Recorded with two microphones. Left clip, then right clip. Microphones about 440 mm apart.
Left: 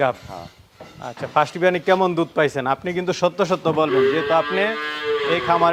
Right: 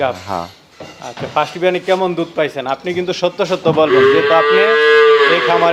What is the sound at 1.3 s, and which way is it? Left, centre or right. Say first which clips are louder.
Speech: right 3 dB; left.